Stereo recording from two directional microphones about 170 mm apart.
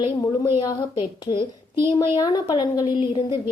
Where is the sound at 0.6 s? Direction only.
25° left (ahead or behind).